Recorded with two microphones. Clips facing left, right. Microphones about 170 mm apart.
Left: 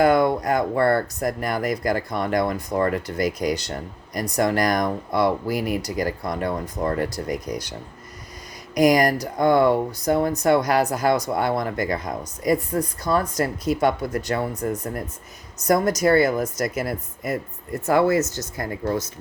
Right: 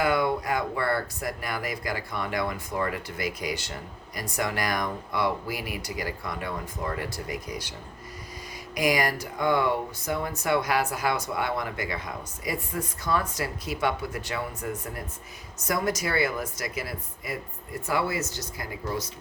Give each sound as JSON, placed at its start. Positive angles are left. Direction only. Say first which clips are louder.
{"t": 0.0, "sound": "speech", "louder": "left 7 dB", "side_deg": 45}